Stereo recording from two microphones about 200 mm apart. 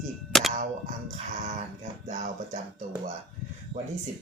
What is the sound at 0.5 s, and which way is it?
Music, 40° right (ahead or behind).